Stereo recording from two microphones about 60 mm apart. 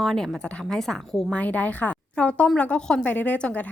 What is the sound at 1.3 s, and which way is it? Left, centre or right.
A woman's voice, left.